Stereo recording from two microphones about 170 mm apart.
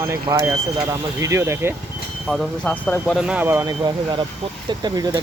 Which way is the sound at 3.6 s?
25° right (ahead or behind).